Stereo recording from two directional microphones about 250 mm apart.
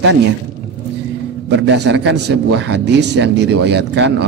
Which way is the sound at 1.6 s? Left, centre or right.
Right.